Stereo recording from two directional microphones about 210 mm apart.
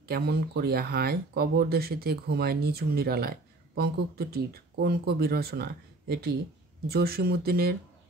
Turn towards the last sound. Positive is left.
turn(degrees=-45)  # may be behind; listen again after turning